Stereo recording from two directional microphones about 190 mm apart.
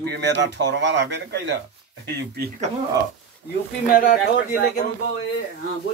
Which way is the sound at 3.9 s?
50° left (ahead or behind).